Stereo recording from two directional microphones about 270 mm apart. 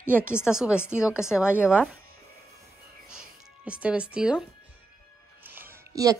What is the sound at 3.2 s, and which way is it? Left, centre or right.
A woman's voice, centre.